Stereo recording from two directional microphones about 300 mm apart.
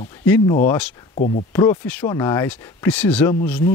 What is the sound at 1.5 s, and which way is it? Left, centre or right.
Speech, centre.